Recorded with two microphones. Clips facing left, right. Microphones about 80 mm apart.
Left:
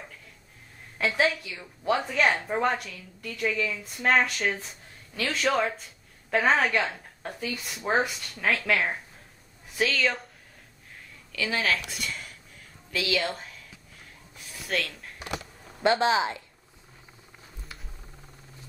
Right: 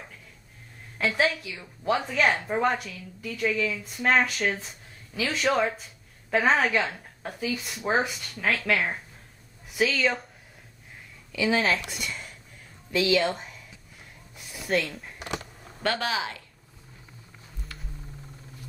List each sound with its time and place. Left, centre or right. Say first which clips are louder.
0.9 s a woman's voice: even; centre
11.3 s speech: right 4 dB; centre
11.9 s speech: even; centre
13.1 s a woman's voice: right 3 dB; centre
14.5 s a sound: right 4 dB; centre
15.8 s speech: left 5 dB; left